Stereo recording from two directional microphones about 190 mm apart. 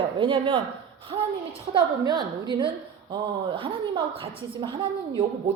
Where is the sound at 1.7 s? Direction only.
25° right (ahead or behind).